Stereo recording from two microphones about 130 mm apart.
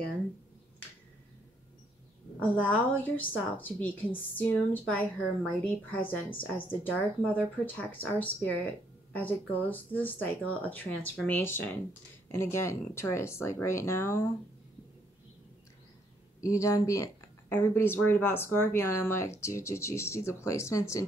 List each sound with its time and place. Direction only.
2.6 s a woman's voice: 10° left (ahead or behind)
16.3 s speech: 25° left (ahead or behind)